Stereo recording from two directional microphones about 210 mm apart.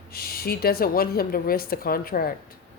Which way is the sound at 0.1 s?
45° left (ahead or behind).